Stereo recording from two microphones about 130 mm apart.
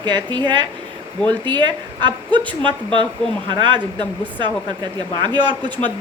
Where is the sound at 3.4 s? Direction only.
35° right (ahead or behind).